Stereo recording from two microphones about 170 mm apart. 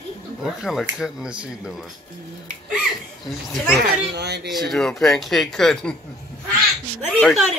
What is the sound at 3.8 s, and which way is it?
Speech, 75° right (ahead or behind).